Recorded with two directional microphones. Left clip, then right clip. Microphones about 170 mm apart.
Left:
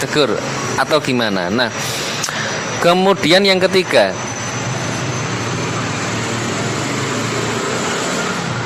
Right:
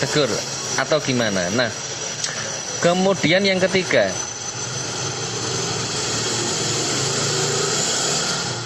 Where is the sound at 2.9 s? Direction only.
40° left (ahead or behind).